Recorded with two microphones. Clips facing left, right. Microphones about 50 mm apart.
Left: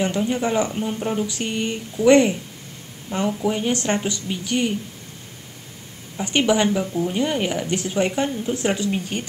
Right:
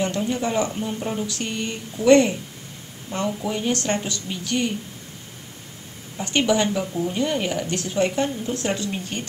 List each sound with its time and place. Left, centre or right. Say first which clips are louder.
0.0 s speech: left 2 dB; centre
6.1 s speech: left 1 dB; centre
6.8 s speech: left 2 dB; centre